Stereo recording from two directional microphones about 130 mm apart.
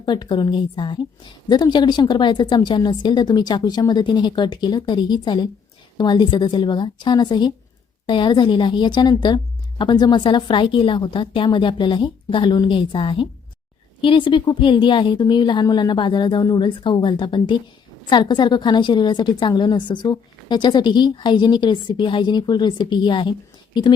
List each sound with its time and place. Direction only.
0.0 s a woman's voice: 35° left (ahead or behind)